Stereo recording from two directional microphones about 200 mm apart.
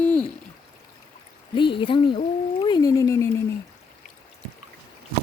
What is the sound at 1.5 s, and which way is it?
Speech, 25° left (ahead or behind).